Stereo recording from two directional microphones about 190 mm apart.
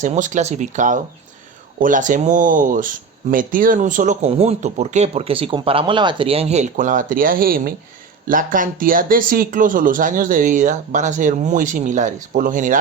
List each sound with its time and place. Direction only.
0.0 s speech: 40° right (ahead or behind)